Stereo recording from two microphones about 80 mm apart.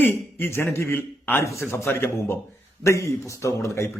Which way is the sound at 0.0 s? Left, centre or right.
Left.